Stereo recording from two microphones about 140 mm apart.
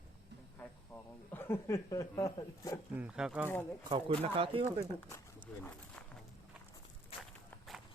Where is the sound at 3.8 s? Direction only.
35° right (ahead or behind).